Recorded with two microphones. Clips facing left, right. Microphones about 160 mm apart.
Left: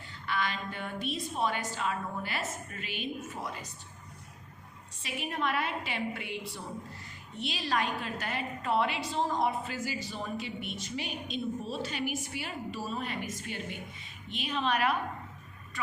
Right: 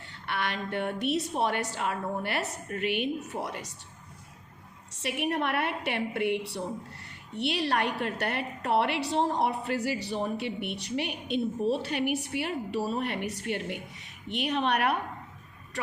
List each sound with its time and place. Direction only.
0.3 s a woman's voice: 65° right (ahead or behind)
4.9 s a woman's voice: 70° right (ahead or behind)